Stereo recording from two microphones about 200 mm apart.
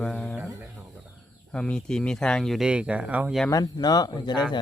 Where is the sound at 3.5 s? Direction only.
20° left (ahead or behind).